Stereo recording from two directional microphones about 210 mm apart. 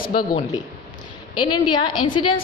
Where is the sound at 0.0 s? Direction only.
45° left (ahead or behind).